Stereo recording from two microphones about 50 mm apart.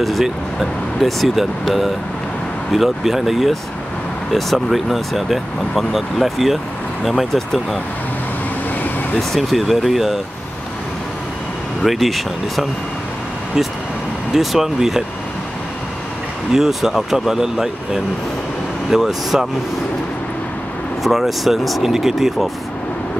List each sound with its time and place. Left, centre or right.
0.0 s speech: centre
9.3 s speech: centre
11.8 s speech: centre
14.3 s speech: centre
16.5 s speech: centre
21.0 s speech: centre